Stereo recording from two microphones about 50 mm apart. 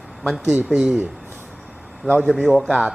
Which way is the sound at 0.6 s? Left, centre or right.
Centre.